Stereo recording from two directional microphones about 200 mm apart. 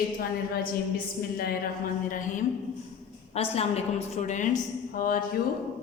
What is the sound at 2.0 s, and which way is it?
Speech, 40° left (ahead or behind).